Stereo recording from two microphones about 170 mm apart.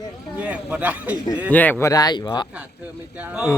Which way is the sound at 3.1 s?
10° right (ahead or behind).